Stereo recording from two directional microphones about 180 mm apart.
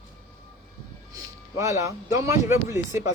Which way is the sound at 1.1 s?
15° right (ahead or behind).